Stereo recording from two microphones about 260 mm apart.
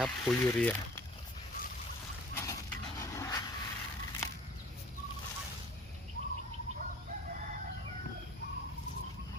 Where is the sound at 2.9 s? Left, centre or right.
Centre.